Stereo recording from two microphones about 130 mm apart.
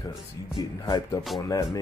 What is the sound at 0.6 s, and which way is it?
Speech, 35° left (ahead or behind).